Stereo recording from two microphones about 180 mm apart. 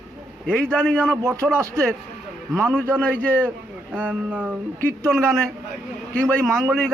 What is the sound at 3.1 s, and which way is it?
Speech, 10° left (ahead or behind).